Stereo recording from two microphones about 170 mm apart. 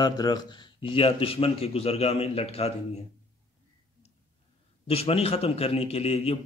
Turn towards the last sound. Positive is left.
turn(degrees=35)  # may be behind; listen again after turning